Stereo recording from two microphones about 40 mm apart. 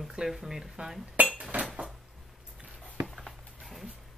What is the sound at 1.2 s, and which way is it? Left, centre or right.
Cutlery, right.